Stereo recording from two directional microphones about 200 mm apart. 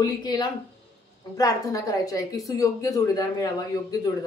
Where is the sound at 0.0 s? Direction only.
20° left (ahead or behind).